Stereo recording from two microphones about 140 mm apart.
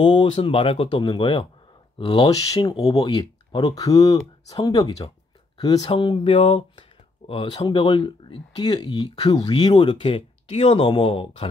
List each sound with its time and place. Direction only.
0.0 s speech: 35° left (ahead or behind)